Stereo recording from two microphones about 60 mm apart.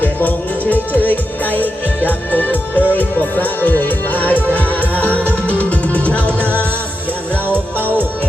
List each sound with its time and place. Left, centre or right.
0.0 s music: left
7.4 s music: right